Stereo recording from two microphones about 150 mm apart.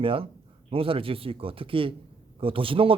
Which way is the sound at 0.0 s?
35° right (ahead or behind).